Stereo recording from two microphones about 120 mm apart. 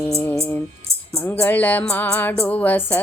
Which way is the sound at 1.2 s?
15° left (ahead or behind).